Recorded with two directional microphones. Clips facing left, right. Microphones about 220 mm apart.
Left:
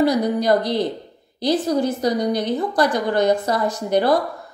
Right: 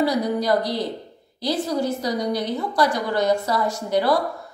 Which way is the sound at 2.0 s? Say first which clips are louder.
Left 4 dB; 20° left (ahead or behind).